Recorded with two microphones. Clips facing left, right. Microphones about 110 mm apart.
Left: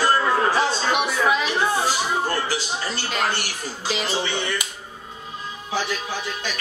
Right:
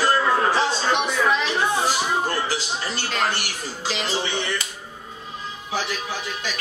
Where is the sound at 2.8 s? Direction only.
10° left (ahead or behind).